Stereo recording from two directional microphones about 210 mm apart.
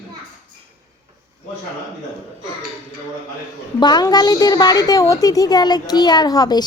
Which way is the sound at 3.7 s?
20° left (ahead or behind).